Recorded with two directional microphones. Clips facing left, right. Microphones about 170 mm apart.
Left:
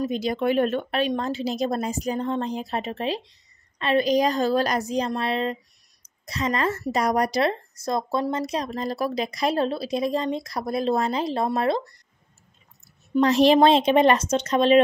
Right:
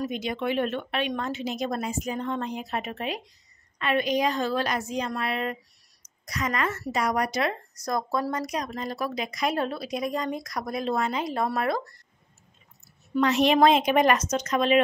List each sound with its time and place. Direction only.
0.0 s speech: 35° left (ahead or behind)
13.2 s speech: 35° left (ahead or behind)